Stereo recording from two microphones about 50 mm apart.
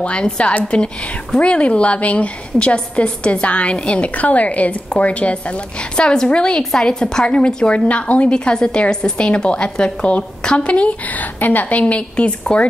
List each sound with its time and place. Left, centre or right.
0.0 s a woman's voice: left
11.3 s a woman's voice: left